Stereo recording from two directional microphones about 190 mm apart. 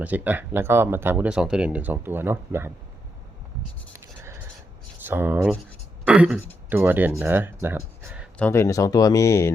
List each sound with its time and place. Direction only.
0.0 s speech: 10° right (ahead or behind)
3.9 s scratch: 15° right (ahead or behind)
5.0 s speech: 10° right (ahead or behind)
6.1 s throat clearing: 5° right (ahead or behind)
6.7 s speech: 10° right (ahead or behind)
8.4 s speech: 10° left (ahead or behind)